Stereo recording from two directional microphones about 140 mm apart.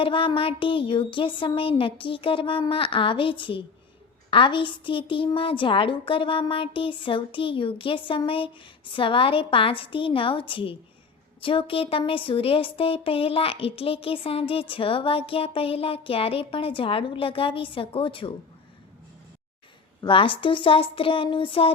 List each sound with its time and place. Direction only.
0.0 s speech: 40° left (ahead or behind)
20.0 s speech: 35° left (ahead or behind)